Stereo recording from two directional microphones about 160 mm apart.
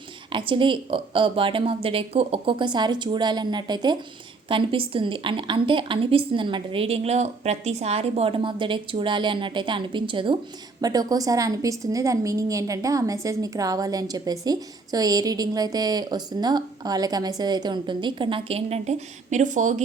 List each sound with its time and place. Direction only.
0.3 s a woman's voice: 30° right (ahead or behind); by 19.8 s 50° right (ahead or behind)